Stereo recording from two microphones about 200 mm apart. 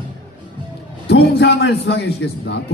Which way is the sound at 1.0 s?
55° left (ahead or behind).